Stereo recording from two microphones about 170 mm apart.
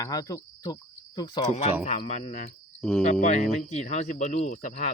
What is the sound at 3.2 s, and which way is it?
Speech, 50° left (ahead or behind).